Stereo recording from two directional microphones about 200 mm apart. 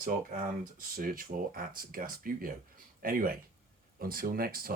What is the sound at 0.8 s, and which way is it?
Speech, 45° right (ahead or behind).